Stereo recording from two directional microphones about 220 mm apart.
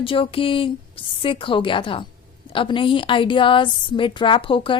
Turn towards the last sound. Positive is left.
turn(degrees=25)  # may be behind; listen again after turning